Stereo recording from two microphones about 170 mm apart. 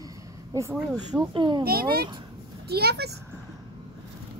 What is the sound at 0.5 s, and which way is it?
Speech, 20° right (ahead or behind).